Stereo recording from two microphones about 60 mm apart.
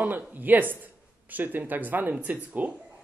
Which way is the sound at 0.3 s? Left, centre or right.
Right.